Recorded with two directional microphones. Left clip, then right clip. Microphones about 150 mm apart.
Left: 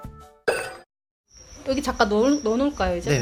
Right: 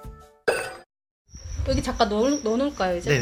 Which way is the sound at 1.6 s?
30° left (ahead or behind).